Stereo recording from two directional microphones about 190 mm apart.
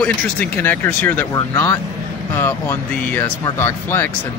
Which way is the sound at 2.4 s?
10° left (ahead or behind).